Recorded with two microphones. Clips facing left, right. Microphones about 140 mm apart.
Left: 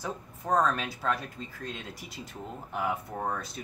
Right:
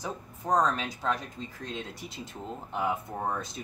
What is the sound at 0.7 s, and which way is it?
Speech, 20° right (ahead or behind).